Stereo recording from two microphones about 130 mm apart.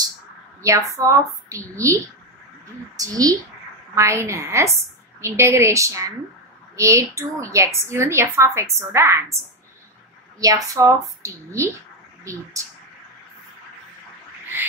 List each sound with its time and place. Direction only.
0.6 s a woman's voice: 25° right (ahead or behind)
3.0 s a woman's voice: 25° right (ahead or behind)
10.4 s a woman's voice: 25° right (ahead or behind)